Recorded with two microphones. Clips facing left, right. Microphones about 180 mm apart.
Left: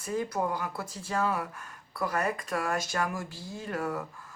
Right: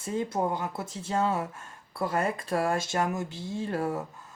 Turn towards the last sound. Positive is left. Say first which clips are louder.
# right 3 dB
turn(degrees=-30)  # may be behind; listen again after turning